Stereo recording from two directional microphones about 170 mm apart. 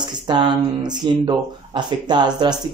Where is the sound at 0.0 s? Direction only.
25° right (ahead or behind).